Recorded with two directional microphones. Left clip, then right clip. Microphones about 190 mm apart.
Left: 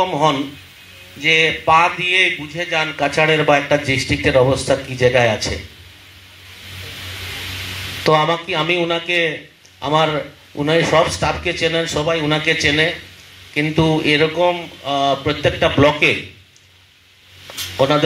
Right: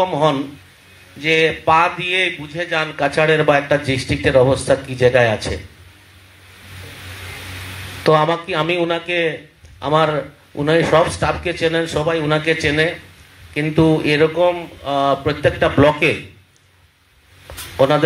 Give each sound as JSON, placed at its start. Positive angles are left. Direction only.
{"t": 0.0, "sound": "a man's voice", "side_deg": -45}
{"t": 8.0, "sound": "a man's voice", "side_deg": -40}